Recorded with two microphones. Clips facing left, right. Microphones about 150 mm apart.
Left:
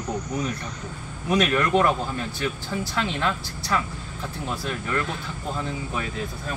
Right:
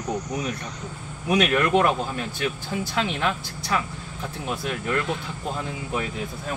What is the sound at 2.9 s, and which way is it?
Speech, 15° right (ahead or behind).